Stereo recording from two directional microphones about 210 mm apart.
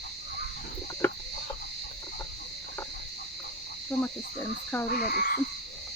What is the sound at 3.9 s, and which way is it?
Cricket, 10° left (ahead or behind).